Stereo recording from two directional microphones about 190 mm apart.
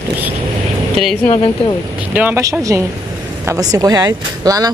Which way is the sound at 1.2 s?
35° left (ahead or behind).